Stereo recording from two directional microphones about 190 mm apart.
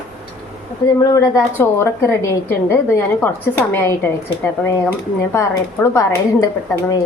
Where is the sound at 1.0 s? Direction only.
15° left (ahead or behind).